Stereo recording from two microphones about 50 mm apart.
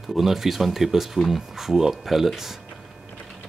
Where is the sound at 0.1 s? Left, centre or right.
Centre.